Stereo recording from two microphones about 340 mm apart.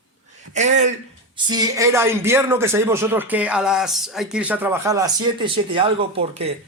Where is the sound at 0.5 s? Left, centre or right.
Right.